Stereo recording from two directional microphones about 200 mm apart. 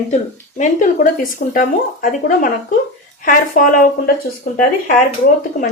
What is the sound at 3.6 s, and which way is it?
Speech, 45° left (ahead or behind).